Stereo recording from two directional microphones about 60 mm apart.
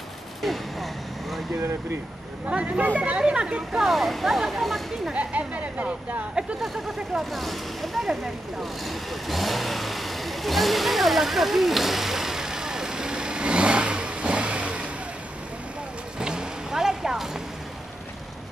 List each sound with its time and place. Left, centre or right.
0.4 s speech: centre
2.4 s speech: right
3.7 s speech: centre
5.1 s speech: right
6.6 s speech: centre
16.2 s vehicle: centre